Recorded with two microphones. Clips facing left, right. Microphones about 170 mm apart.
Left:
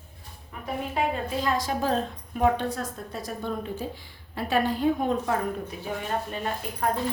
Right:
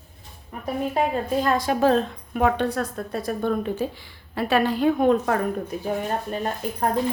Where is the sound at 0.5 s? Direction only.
40° right (ahead or behind); by 5.4 s 70° right (ahead or behind).